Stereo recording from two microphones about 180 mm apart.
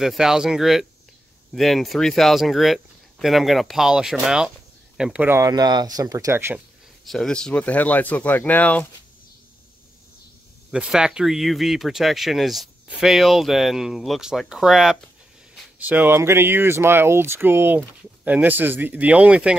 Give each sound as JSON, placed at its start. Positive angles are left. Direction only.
{"t": 0.0, "sound": "speech", "side_deg": 0}
{"t": 7.1, "sound": "speech", "side_deg": 5}
{"t": 10.7, "sound": "speech", "side_deg": -5}